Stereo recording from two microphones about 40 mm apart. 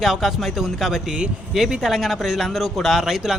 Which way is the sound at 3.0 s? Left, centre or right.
Centre.